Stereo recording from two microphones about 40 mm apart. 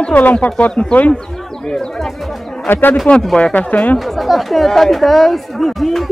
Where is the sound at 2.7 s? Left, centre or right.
Left.